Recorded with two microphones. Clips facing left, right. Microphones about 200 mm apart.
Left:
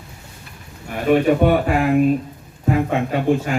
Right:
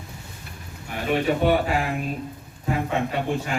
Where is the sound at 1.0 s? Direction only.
50° left (ahead or behind).